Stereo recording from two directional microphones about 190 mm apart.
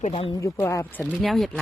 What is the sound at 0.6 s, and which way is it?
Speech, 15° left (ahead or behind).